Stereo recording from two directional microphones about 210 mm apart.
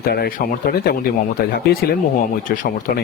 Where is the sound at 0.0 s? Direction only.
50° left (ahead or behind).